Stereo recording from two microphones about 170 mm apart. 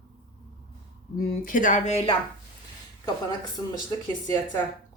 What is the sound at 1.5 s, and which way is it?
Speech, 50° left (ahead or behind).